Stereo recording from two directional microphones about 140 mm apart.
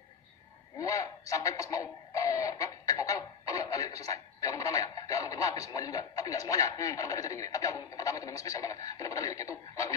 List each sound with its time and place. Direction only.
0.7 s radio: 25° left (ahead or behind)